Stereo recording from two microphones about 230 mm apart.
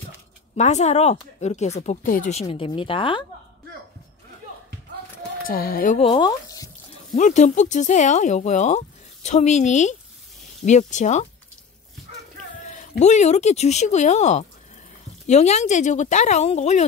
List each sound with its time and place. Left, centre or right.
0.6 s speech: left
2.4 s speech: left
5.5 s speech: left; by 6.7 s centre
7.2 s speech: left
12.7 s speech: left